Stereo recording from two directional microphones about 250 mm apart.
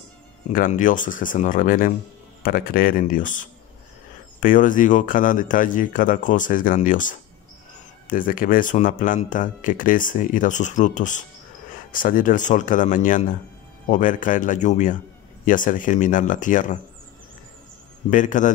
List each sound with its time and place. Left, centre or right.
0.5 s speech: left
18.1 s speech: left